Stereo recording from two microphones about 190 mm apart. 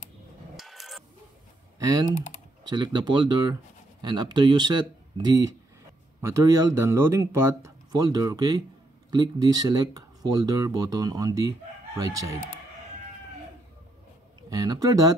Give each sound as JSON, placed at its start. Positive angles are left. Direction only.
{"t": 0.6, "sound": "printer", "side_deg": 0}
{"t": 1.8, "sound": "speech", "side_deg": -20}
{"t": 14.5, "sound": "speech", "side_deg": -20}